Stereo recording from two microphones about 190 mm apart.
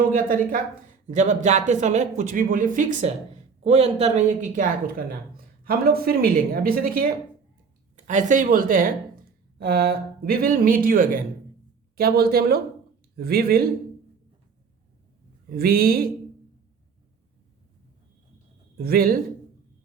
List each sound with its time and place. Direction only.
0.1 s speech: 50° right (ahead or behind)
15.4 s speech: 55° right (ahead or behind)
18.8 s speech: 50° right (ahead or behind)